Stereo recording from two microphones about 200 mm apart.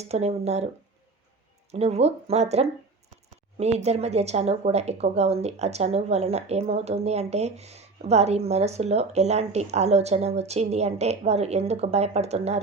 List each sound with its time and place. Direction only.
0.0 s speech: 30° right (ahead or behind)
1.7 s speech: 30° right (ahead or behind)